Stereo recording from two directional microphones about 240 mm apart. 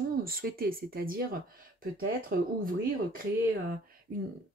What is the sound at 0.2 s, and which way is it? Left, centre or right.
Speech, right.